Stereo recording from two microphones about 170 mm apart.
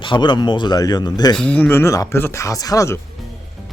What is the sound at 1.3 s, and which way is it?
Speech, 10° left (ahead or behind).